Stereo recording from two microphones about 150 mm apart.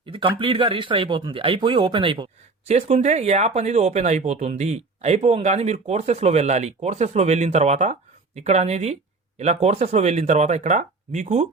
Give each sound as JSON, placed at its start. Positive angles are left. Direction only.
{"t": 0.0, "sound": "speech", "side_deg": -35}
{"t": 2.6, "sound": "speech", "side_deg": -45}